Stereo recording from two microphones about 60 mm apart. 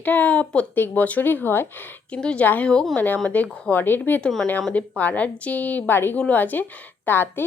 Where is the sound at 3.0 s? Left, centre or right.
Left.